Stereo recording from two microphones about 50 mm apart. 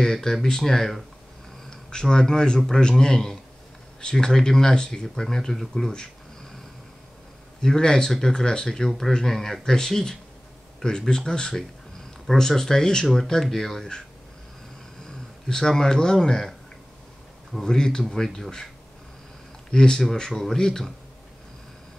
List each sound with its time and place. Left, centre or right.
0.0 s speech: centre
7.6 s speech: centre
15.0 s speech: centre
17.6 s speech: centre
19.7 s speech: centre